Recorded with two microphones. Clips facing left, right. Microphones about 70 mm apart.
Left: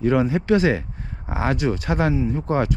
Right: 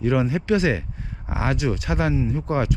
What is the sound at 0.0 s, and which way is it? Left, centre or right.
Speech, left.